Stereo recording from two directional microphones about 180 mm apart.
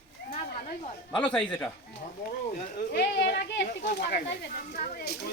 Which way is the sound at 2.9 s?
70° left (ahead or behind).